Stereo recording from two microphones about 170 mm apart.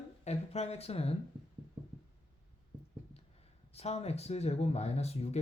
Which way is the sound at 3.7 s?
40° left (ahead or behind).